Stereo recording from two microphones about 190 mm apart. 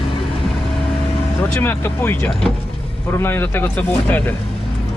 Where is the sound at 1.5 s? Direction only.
10° left (ahead or behind).